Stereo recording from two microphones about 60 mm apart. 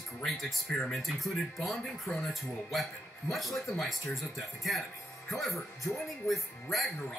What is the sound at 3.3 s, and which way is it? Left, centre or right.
Speech, centre.